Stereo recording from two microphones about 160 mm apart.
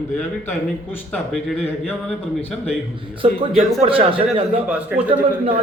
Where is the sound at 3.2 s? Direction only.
35° right (ahead or behind).